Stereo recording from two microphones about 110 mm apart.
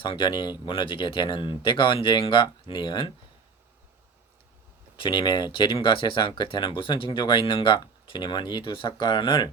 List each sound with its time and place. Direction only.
0.0 s speech: 50° left (ahead or behind)
4.9 s speech: 45° left (ahead or behind)